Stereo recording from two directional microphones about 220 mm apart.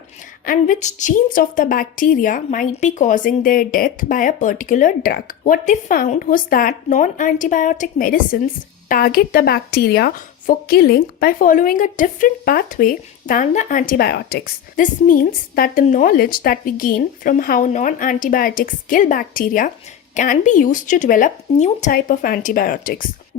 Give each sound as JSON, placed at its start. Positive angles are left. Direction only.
{"t": 0.4, "sound": "a woman's voice", "side_deg": 35}